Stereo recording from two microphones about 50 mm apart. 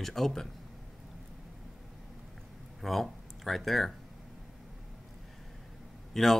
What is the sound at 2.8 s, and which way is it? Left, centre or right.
Speech, centre.